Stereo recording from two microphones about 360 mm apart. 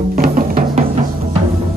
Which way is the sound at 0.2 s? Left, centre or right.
Centre.